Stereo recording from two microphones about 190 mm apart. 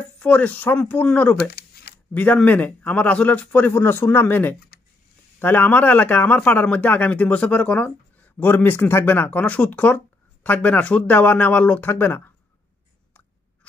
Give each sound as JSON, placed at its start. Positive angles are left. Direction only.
{"t": 0.2, "sound": "a man's voice", "side_deg": 5}
{"t": 1.5, "sound": "a sound", "side_deg": 55}
{"t": 2.1, "sound": "a man's voice", "side_deg": 10}